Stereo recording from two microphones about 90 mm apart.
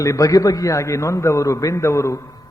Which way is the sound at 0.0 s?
40° left (ahead or behind).